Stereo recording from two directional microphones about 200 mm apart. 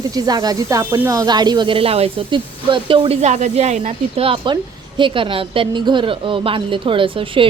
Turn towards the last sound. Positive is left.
turn(degrees=-25)  # may be behind; listen again after turning